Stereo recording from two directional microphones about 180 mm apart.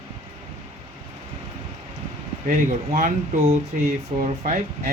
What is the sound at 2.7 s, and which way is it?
Speech, 40° right (ahead or behind).